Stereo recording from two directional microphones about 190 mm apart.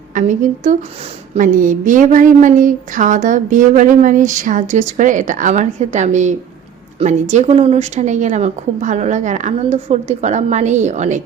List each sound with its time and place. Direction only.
0.1 s a woman's voice: 40° right (ahead or behind)